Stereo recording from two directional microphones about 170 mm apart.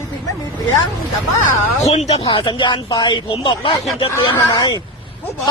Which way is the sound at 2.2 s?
25° left (ahead or behind).